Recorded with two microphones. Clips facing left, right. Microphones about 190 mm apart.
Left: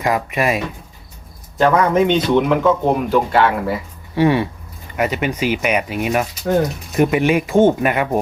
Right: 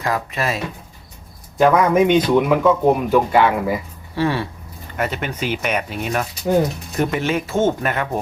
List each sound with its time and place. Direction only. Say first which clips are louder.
0.0 s speech: left 4 dB; 15° left (ahead or behind)
1.5 s a man's voice: even; 5° right (ahead or behind)
4.1 s speech: left 5 dB; 15° left (ahead or behind)